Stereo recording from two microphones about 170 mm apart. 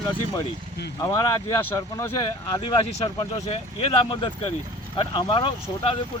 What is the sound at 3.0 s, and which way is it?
Speech, 35° left (ahead or behind).